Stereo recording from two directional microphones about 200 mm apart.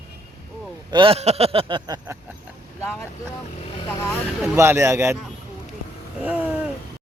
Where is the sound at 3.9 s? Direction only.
15° left (ahead or behind).